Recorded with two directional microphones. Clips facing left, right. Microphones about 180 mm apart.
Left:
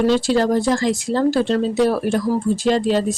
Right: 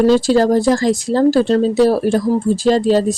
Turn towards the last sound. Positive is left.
turn(degrees=-35)  # may be behind; listen again after turning